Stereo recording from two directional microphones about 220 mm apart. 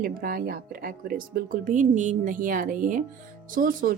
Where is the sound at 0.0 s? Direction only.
40° right (ahead or behind).